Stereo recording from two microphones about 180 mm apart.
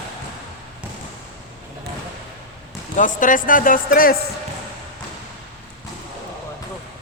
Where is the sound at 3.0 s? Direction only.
45° left (ahead or behind).